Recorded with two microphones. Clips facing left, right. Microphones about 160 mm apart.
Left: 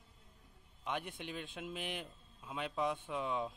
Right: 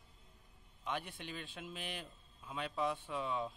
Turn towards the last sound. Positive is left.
turn(degrees=5)  # may be behind; listen again after turning